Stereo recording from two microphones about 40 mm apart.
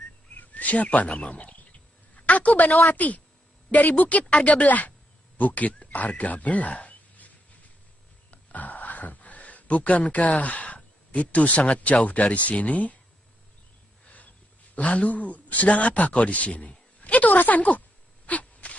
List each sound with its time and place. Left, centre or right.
0.4 s speech: left
2.1 s a sound: left
2.9 s speech: left
4.3 s speech: left
8.3 s speech: left
14.0 s a sound: left
14.8 s speech: left